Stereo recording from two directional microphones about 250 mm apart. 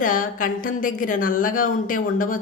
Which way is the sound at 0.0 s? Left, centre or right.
Left.